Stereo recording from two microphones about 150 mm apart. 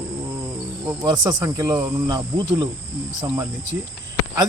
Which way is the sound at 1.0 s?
30° right (ahead or behind).